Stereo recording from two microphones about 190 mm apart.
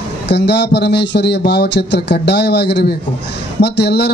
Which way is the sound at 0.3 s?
60° left (ahead or behind).